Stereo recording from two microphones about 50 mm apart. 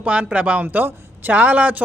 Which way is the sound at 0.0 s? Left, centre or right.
Right.